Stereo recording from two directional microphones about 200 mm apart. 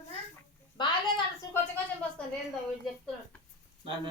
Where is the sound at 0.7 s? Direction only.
25° left (ahead or behind).